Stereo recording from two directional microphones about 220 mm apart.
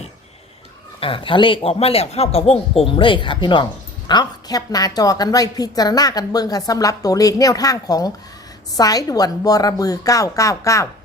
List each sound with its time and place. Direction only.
0.9 s speech: 25° left (ahead or behind)